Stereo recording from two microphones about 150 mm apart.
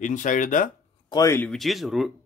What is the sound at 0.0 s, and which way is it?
Speech, 55° left (ahead or behind).